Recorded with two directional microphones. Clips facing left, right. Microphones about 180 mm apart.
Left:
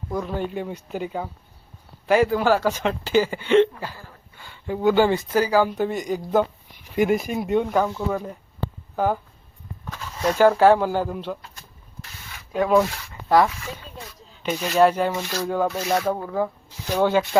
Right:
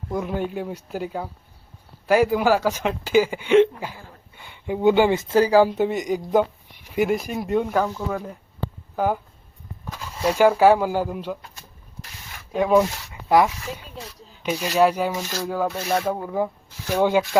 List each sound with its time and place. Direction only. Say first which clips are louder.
0.1 s speech: right 1 dB; 15° right (ahead or behind)
6.9 s speech: left 1 dB; 5° right (ahead or behind)
9.0 s speech: even; 10° right (ahead or behind)
12.7 s speech: right 1 dB; 15° right (ahead or behind)